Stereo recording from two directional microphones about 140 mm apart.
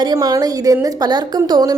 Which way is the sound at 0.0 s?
30° right (ahead or behind).